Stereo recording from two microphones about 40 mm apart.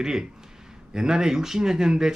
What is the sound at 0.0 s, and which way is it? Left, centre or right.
Speech, centre.